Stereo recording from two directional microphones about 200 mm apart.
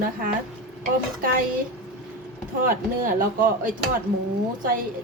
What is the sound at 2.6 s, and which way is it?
A woman's voice, 45° right (ahead or behind).